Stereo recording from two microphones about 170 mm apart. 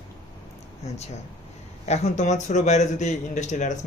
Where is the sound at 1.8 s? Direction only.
40° left (ahead or behind).